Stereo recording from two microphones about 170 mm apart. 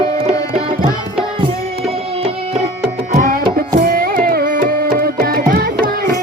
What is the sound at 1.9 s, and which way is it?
Music, 35° right (ahead or behind).